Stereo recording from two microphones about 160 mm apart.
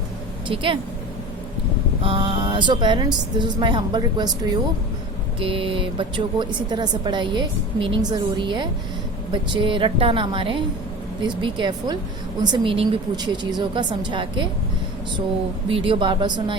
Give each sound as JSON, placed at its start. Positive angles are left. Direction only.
{"t": 0.4, "sound": "a woman's voice", "side_deg": -35}
{"t": 2.0, "sound": "a woman's voice", "side_deg": -35}
{"t": 15.7, "sound": "a woman's voice", "side_deg": -30}